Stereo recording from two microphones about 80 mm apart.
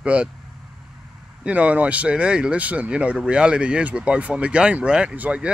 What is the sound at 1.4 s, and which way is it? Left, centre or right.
Speech, centre.